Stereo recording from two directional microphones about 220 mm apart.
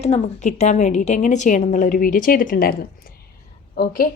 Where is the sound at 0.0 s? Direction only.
30° left (ahead or behind).